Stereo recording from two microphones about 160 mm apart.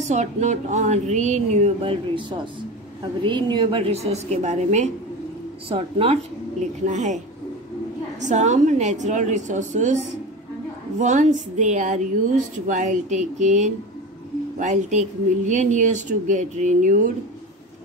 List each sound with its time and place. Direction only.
0.0 s speech: 45° right (ahead or behind)
1.9 s a woman's voice: 30° right (ahead or behind); by 4.9 s 45° right (ahead or behind)
5.7 s a woman's voice: 35° right (ahead or behind)
6.9 s speech: 50° right (ahead or behind)
8.2 s speech: 50° right (ahead or behind)
11.0 s speech: 50° right (ahead or behind)